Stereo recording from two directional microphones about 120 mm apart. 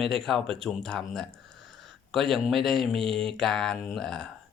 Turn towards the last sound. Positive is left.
turn(degrees=5)  # may be behind; listen again after turning